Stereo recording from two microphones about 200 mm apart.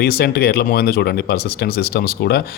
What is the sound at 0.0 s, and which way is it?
Speech, 50° left (ahead or behind).